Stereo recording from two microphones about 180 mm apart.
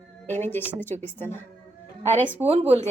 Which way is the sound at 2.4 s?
35° right (ahead or behind).